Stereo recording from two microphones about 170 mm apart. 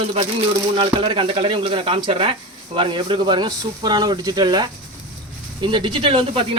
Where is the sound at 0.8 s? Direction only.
30° right (ahead or behind).